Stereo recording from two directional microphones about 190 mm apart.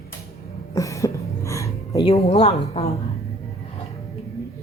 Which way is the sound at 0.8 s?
15° left (ahead or behind).